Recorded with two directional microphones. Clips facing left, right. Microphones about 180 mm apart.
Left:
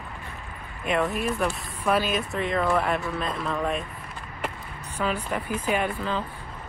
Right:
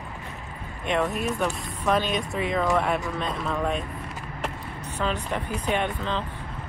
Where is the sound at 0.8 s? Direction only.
5° left (ahead or behind).